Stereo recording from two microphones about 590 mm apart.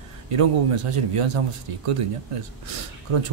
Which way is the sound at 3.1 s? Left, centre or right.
Right.